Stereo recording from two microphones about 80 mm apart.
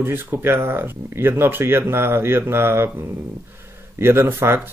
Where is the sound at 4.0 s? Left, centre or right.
Right.